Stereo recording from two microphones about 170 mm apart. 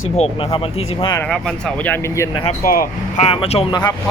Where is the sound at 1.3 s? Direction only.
5° left (ahead or behind).